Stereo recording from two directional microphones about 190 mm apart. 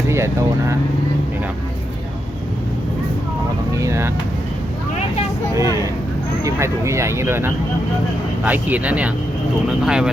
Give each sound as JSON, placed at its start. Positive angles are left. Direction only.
{"t": 0.1, "sound": "speech", "side_deg": -15}
{"t": 3.8, "sound": "vehicle", "side_deg": -15}
{"t": 5.5, "sound": "vehicle", "side_deg": -15}
{"t": 6.4, "sound": "speech", "side_deg": -15}